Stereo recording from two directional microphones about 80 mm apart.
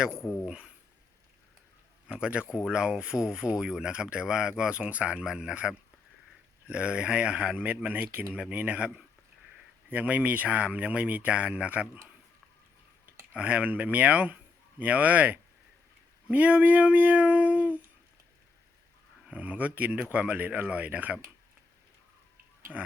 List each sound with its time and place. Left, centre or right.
0.4 s speech: centre
2.0 s speech: centre
13.3 s speech: centre
19.3 s speech: centre